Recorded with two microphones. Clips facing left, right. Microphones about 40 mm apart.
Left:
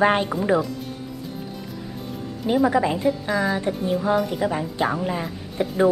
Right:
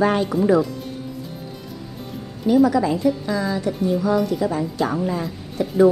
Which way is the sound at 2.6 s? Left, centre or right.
Left.